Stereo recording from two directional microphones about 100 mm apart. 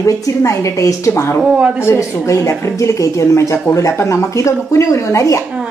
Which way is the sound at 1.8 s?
30° left (ahead or behind).